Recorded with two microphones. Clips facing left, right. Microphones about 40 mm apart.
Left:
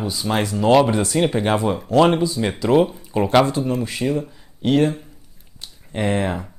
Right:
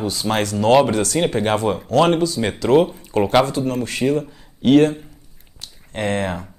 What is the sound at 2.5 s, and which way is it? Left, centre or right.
Speech, centre.